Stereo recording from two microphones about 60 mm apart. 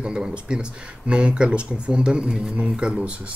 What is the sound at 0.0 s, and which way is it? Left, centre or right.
Speech, centre.